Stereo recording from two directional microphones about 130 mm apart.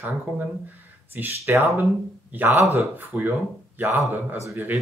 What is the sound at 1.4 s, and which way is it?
Speech, 20° right (ahead or behind).